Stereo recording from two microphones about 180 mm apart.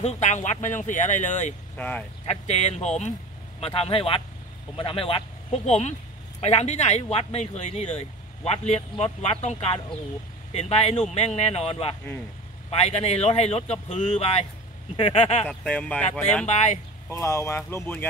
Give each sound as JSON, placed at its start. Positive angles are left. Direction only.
{"t": 0.0, "sound": "speech", "side_deg": 40}
{"t": 1.8, "sound": "speech", "side_deg": 5}
{"t": 2.2, "sound": "speech", "side_deg": 40}
{"t": 15.4, "sound": "speech", "side_deg": 10}
{"t": 16.4, "sound": "speech", "side_deg": 40}
{"t": 17.1, "sound": "speech", "side_deg": 15}